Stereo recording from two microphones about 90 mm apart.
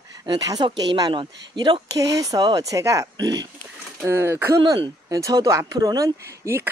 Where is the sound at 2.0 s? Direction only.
40° right (ahead or behind).